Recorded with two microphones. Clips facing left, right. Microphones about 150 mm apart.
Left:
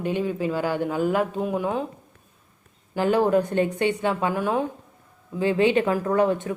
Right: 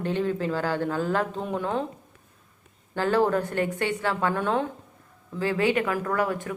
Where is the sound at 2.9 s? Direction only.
15° left (ahead or behind).